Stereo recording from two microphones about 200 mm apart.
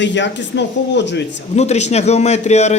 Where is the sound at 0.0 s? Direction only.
65° left (ahead or behind).